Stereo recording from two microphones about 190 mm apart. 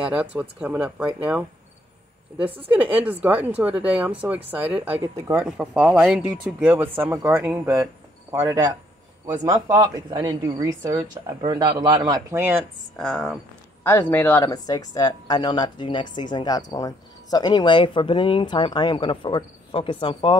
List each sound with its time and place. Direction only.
0.1 s speech: 5° right (ahead or behind)
2.4 s speech: 30° right (ahead or behind)
2.7 s speech: 10° right (ahead or behind)
12.9 s speech: centre (ahead or behind)
13.8 s speech: 10° left (ahead or behind)